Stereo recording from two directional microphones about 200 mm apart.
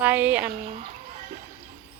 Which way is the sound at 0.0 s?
10° right (ahead or behind).